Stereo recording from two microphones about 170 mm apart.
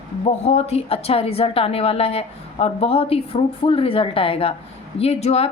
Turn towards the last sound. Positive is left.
turn(degrees=40)  # may be behind; listen again after turning